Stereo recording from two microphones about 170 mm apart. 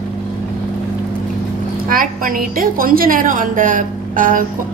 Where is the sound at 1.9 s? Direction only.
55° right (ahead or behind).